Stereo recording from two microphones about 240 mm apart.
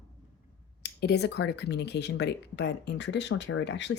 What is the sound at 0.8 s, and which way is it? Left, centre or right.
Speech, left.